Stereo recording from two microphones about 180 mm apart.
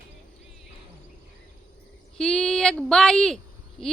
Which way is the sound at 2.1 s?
5° left (ahead or behind).